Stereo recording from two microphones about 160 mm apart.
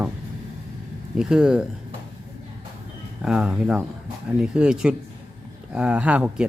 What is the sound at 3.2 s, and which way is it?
Speech, 5° right (ahead or behind).